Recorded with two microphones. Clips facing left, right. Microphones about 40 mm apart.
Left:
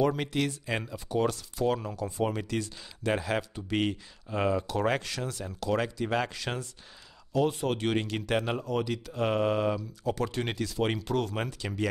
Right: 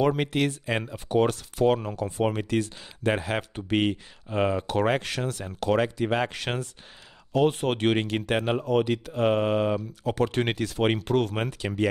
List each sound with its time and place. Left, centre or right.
0.0 s speech: right
0.7 s speech: right
0.9 s speech: right
5.0 s speech: right
5.8 s speech: right
6.3 s speech: right
8.0 s speech: right
9.2 s speech: right
9.8 s speech: right